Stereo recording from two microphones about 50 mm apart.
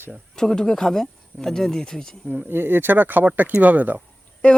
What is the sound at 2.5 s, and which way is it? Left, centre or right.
Speech, right.